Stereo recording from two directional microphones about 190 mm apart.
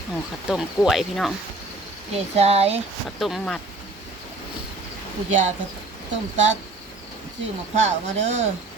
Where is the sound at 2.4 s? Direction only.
35° right (ahead or behind).